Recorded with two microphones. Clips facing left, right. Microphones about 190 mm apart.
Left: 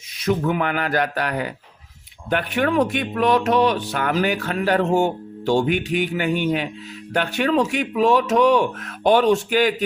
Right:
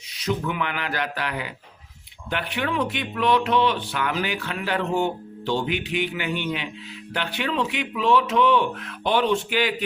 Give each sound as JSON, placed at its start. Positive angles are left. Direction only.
{"t": 0.2, "sound": "speech", "side_deg": 50}